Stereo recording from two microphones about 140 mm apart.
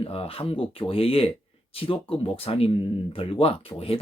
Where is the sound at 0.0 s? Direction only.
45° left (ahead or behind).